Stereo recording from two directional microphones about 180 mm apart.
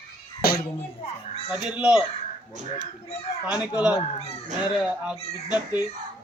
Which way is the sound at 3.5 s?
5° right (ahead or behind).